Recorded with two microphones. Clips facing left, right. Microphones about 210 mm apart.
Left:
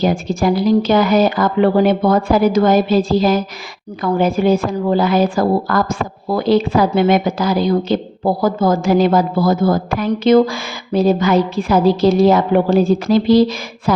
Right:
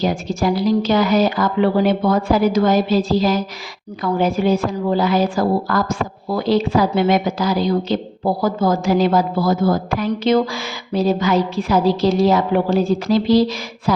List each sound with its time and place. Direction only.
0.0 s a woman's voice: 55° left (ahead or behind)